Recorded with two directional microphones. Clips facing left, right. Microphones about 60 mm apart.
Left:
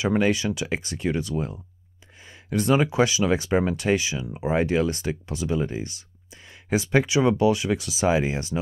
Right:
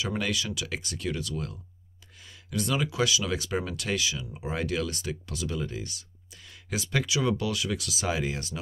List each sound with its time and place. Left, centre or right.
0.0 s speech: left